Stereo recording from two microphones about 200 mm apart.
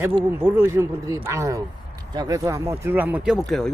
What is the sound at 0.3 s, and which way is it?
Speech, 10° right (ahead or behind).